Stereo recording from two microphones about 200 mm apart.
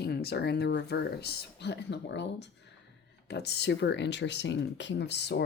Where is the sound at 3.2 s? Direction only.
55° left (ahead or behind).